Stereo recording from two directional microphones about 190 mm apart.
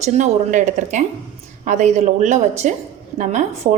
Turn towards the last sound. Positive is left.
turn(degrees=-40)  # may be behind; listen again after turning